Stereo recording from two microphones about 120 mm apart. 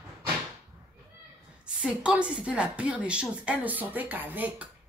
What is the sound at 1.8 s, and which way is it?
Speech, 10° right (ahead or behind).